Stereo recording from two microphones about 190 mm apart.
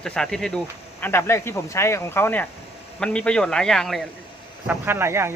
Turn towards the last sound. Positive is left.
turn(degrees=-15)  # may be behind; listen again after turning